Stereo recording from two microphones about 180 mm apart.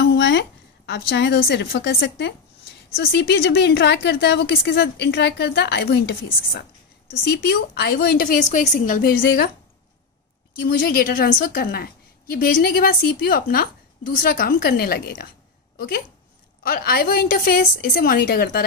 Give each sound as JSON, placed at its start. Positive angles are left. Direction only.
{"t": 0.0, "sound": "a woman's voice", "side_deg": 70}
{"t": 8.4, "sound": "a woman's voice", "side_deg": 45}
{"t": 10.9, "sound": "a woman's voice", "side_deg": 55}
{"t": 16.6, "sound": "a woman's voice", "side_deg": 55}